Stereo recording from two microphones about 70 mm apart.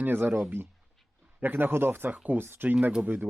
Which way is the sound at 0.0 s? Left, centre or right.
Right.